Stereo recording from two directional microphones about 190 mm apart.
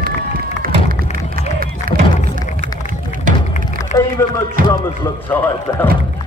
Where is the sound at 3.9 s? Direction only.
40° left (ahead or behind).